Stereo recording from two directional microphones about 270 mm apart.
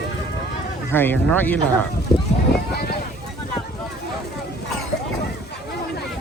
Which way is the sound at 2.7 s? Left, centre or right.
Left.